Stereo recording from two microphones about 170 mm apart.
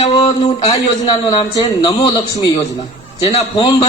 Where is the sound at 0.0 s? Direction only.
35° left (ahead or behind).